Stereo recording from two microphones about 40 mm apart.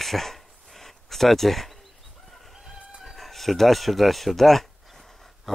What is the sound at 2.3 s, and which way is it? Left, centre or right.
Chicken, centre.